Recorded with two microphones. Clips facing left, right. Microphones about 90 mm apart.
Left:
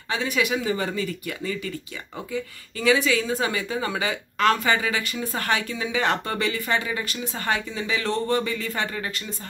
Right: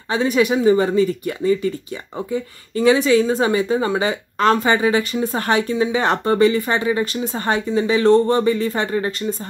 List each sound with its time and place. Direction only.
0.1 s a woman's voice: 30° right (ahead or behind)